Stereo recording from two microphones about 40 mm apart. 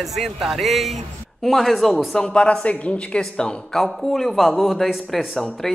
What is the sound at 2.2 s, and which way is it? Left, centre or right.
Speech, left.